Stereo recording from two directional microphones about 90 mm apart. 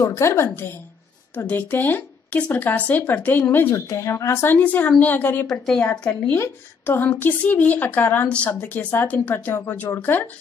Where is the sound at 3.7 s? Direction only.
40° left (ahead or behind); by 5.5 s 20° left (ahead or behind).